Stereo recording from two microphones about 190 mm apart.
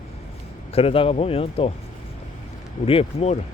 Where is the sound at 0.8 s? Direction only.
30° left (ahead or behind).